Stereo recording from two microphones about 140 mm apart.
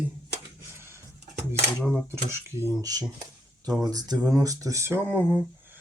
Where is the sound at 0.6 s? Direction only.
20° right (ahead or behind).